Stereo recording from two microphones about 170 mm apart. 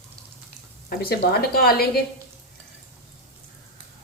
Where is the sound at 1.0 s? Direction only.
65° left (ahead or behind).